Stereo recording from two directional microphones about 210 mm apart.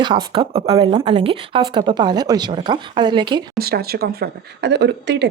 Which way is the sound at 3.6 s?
45° right (ahead or behind).